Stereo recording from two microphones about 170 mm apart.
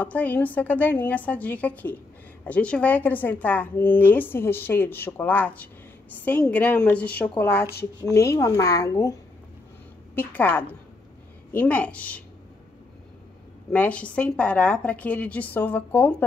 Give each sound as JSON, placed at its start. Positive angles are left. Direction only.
{"t": 0.0, "sound": "speech", "side_deg": 10}
{"t": 10.1, "sound": "speech", "side_deg": 10}
{"t": 13.7, "sound": "speech", "side_deg": 5}